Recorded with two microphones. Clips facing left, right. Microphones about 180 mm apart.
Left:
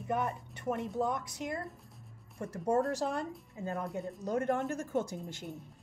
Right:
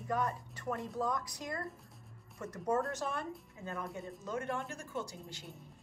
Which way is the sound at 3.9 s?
Centre (ahead or behind).